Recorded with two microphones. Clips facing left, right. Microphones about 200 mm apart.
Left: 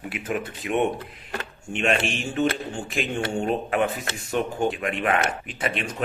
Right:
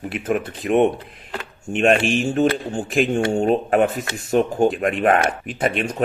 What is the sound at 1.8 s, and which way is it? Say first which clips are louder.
Speech: right 7 dB; 50° right (ahead or behind).